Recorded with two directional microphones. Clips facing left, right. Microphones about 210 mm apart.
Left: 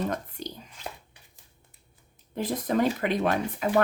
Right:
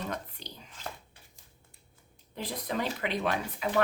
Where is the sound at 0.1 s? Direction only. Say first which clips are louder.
Left 5 dB; 45° left (ahead or behind).